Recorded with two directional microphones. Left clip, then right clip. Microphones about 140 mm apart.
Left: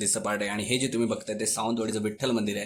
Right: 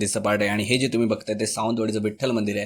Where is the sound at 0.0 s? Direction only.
50° right (ahead or behind).